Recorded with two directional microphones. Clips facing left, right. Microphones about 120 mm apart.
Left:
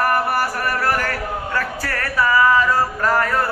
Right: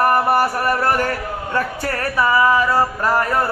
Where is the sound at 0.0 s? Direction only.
25° right (ahead or behind).